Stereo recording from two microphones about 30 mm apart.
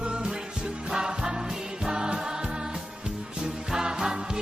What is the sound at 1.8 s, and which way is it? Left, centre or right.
Music, right.